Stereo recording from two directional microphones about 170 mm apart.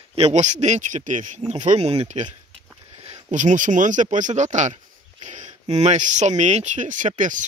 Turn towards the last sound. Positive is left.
turn(degrees=-50)  # may be behind; listen again after turning